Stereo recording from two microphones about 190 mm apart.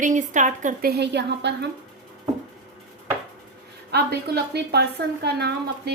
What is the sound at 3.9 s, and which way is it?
A woman's voice, 60° right (ahead or behind).